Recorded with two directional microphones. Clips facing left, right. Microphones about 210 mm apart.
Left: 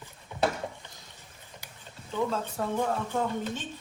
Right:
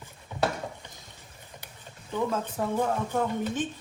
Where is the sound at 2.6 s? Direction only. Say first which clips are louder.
Right 2 dB; 10° right (ahead or behind).